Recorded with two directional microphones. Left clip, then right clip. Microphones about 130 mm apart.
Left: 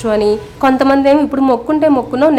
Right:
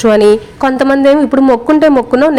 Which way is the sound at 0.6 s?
35° right (ahead or behind).